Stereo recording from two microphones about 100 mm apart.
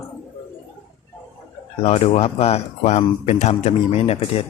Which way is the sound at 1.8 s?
90° left.